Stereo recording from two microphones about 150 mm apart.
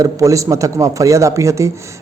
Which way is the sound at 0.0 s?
20° right (ahead or behind).